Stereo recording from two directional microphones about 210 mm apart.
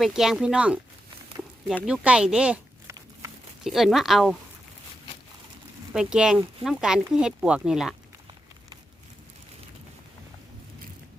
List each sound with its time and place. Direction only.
0.0 s speech: centre (ahead or behind)
2.9 s a sound: 15° right (ahead or behind)
3.6 s speech: centre (ahead or behind)
5.9 s speech: 5° right (ahead or behind)